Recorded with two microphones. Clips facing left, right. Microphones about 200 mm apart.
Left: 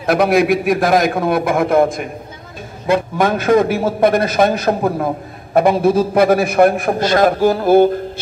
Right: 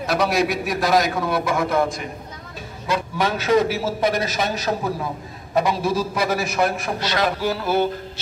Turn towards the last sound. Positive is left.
turn(degrees=50)  # may be behind; listen again after turning